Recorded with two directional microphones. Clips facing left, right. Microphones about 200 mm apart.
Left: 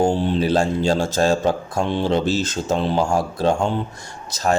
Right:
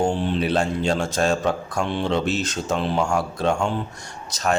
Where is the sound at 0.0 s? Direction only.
35° left (ahead or behind).